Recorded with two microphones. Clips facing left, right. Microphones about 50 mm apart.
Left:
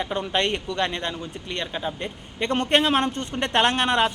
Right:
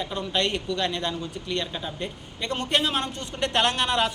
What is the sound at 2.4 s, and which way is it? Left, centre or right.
Speech, left.